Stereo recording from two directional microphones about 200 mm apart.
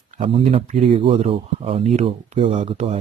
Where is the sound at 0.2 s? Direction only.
30° right (ahead or behind).